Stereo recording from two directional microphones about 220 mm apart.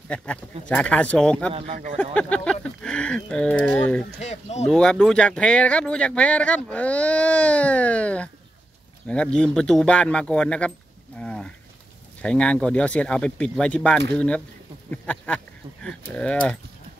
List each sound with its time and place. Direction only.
0.1 s speech: 5° left (ahead or behind)
1.5 s speech: 35° right (ahead or behind)
2.1 s speech: 5° left (ahead or behind)
4.2 s speech: 30° left (ahead or behind)
4.6 s speech: 5° left (ahead or behind)
11.1 s a sound: 5° left (ahead or behind)
12.2 s speech: 5° left (ahead or behind)